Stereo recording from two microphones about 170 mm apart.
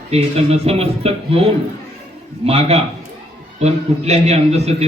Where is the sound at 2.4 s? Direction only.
35° right (ahead or behind).